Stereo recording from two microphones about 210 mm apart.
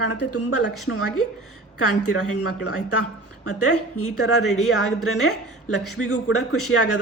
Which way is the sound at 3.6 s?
90° left.